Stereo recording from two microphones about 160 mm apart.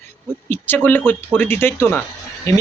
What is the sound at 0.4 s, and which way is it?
Speech, 10° left (ahead or behind).